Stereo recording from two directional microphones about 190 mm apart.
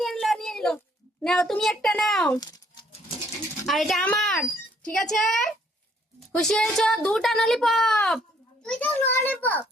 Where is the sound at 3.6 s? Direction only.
Centre (ahead or behind).